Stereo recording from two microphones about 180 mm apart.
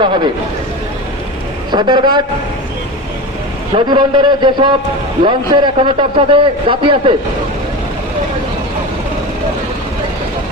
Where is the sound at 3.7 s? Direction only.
25° right (ahead or behind).